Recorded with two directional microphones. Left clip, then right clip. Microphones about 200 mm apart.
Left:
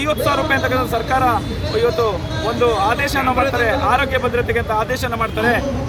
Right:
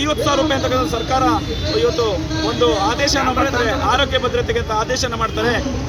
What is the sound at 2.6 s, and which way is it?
A man's voice, 5° left (ahead or behind).